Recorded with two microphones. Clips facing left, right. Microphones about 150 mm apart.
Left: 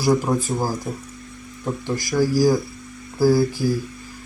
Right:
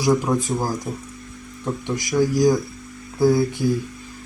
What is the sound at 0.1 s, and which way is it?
Speech, 5° left (ahead or behind).